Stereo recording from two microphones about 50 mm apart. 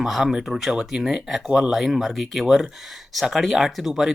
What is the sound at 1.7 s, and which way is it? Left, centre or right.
Speech, centre.